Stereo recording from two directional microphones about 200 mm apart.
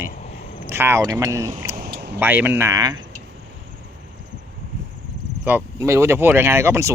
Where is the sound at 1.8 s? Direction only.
50° right (ahead or behind).